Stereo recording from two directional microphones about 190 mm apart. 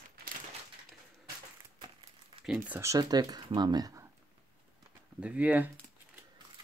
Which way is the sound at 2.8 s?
20° right (ahead or behind).